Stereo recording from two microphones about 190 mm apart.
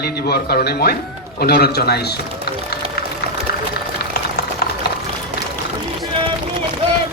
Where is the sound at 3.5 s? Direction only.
55° left (ahead or behind).